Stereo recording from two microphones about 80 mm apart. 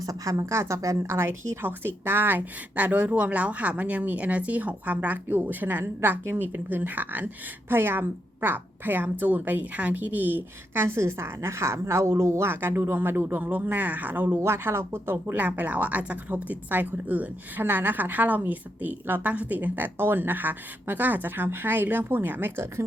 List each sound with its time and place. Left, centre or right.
0.0 s a woman's voice: right